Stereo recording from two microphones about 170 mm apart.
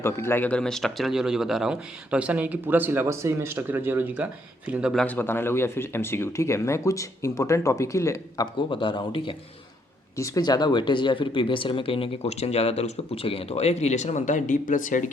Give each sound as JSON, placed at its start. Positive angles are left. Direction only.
{"t": 0.0, "sound": "speech", "side_deg": 15}
{"t": 5.0, "sound": "speech", "side_deg": 10}
{"t": 8.7, "sound": "speech", "side_deg": 30}